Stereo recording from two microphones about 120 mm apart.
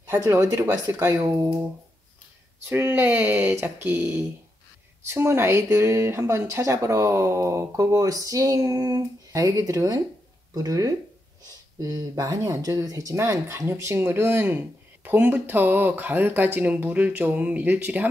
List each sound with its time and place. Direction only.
0.0 s speech: 25° right (ahead or behind)
2.7 s speech: 20° right (ahead or behind)